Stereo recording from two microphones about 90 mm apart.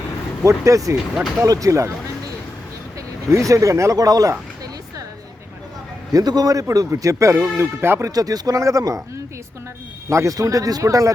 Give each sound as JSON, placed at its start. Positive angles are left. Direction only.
{"t": 0.4, "sound": "a man's voice", "side_deg": -35}
{"t": 1.1, "sound": "speech", "side_deg": 0}
{"t": 1.5, "sound": "a man's voice", "side_deg": -40}
{"t": 3.2, "sound": "speech", "side_deg": -35}
{"t": 6.1, "sound": "a man's voice", "side_deg": -45}
{"t": 8.1, "sound": "a man's voice", "side_deg": -45}